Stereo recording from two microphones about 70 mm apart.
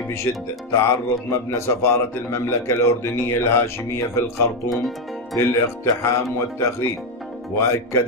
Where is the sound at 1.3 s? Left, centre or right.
Left.